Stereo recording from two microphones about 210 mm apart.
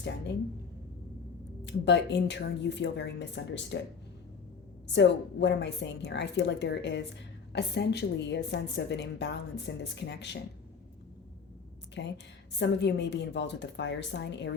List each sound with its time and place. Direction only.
1.6 s a woman's voice: 55° left (ahead or behind)
4.9 s a woman's voice: 55° left (ahead or behind)
11.9 s a woman's voice: 55° left (ahead or behind)